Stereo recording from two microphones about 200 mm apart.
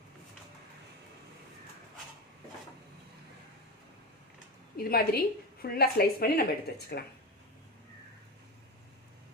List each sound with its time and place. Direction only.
4.8 s a woman's voice: 50° left (ahead or behind)